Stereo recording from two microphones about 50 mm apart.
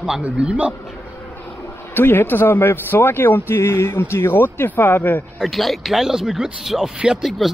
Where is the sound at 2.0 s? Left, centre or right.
Left.